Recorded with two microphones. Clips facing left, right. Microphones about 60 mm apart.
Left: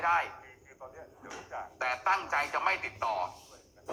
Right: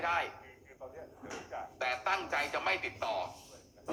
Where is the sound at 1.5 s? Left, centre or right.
Left.